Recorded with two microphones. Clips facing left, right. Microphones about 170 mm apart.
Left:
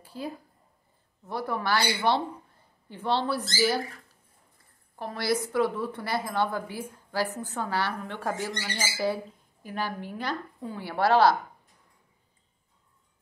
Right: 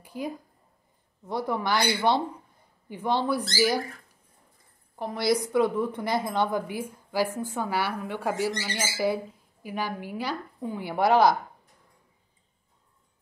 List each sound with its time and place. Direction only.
0.0 s a sound: 15° right (ahead or behind)
1.2 s a woman's voice: 15° right (ahead or behind)
4.9 s a woman's voice: 15° right (ahead or behind)